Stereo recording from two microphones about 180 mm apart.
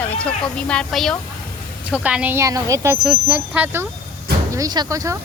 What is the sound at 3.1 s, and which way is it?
Speech, 5° right (ahead or behind).